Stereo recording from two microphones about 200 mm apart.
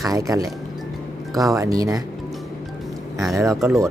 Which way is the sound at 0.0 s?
15° right (ahead or behind).